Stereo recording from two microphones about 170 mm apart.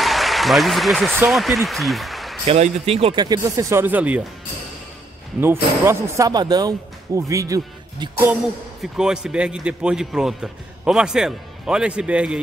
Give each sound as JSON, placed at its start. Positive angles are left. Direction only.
{"t": 0.0, "sound": "applause", "side_deg": 0}
{"t": 1.3, "sound": "speech", "side_deg": 0}
{"t": 2.4, "sound": "speech", "side_deg": -35}
{"t": 5.4, "sound": "speech", "side_deg": -15}
{"t": 8.9, "sound": "a man's voice", "side_deg": -5}